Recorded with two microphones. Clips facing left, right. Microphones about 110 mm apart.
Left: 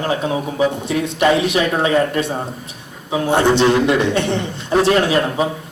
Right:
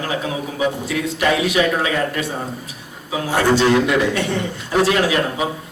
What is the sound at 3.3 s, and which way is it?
A man's voice, 25° left (ahead or behind).